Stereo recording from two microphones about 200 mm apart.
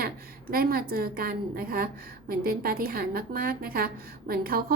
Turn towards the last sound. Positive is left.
turn(degrees=-50)  # may be behind; listen again after turning